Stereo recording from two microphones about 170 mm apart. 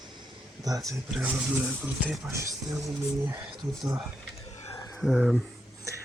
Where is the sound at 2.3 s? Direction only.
20° right (ahead or behind).